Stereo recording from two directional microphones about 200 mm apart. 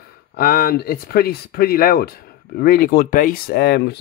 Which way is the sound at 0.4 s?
45° left (ahead or behind).